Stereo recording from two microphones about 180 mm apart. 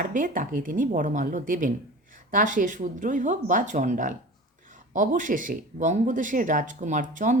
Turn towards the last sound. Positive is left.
turn(degrees=-45)  # may be behind; listen again after turning